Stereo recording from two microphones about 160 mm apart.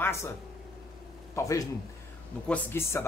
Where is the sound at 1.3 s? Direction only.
20° left (ahead or behind).